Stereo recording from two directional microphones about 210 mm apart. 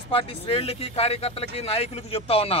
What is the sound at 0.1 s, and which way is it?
Speech, 25° left (ahead or behind).